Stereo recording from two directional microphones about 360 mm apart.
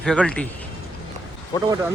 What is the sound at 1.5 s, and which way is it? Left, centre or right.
Speech, centre.